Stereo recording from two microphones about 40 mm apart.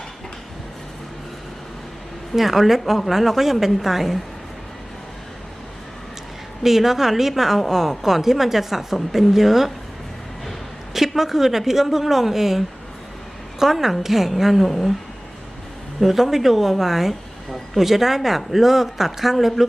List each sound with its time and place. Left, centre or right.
2.3 s a woman's voice: centre
6.6 s a woman's voice: centre
10.9 s a woman's voice: centre
16.0 s a woman's voice: centre